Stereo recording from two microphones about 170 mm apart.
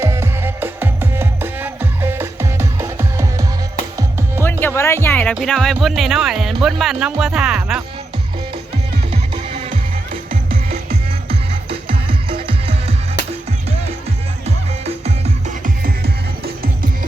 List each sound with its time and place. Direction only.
0.0 s music: 15° right (ahead or behind)
4.6 s music: 15° left (ahead or behind)
5.3 s speech: centre (ahead or behind)
9.3 s music: 35° right (ahead or behind)
10.1 s music: 55° right (ahead or behind)
11.3 s music: 35° right (ahead or behind)
14.4 s music: 40° right (ahead or behind)